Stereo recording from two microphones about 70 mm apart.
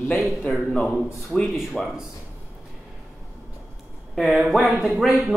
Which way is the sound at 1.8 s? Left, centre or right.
Centre.